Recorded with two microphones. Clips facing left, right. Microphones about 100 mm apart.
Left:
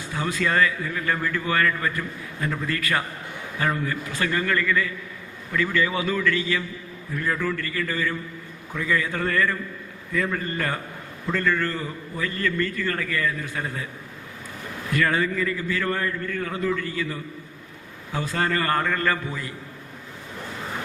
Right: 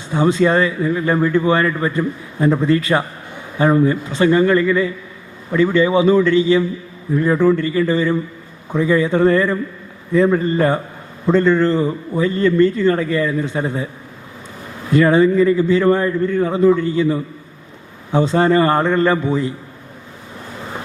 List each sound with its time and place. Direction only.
0.1 s a man's voice: 25° right (ahead or behind)
14.8 s a man's voice: 25° right (ahead or behind)